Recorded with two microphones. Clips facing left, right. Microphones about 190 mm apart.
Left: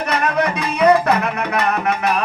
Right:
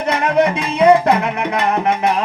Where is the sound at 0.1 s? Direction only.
25° right (ahead or behind).